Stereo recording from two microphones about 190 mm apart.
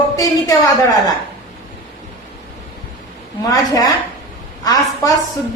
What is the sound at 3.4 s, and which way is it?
A woman's voice, 20° left (ahead or behind).